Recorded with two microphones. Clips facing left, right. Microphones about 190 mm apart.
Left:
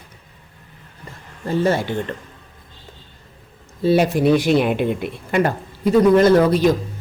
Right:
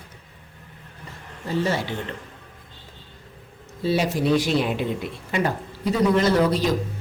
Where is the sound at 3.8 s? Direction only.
55° left (ahead or behind).